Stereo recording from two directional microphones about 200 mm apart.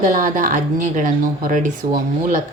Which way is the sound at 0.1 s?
40° right (ahead or behind).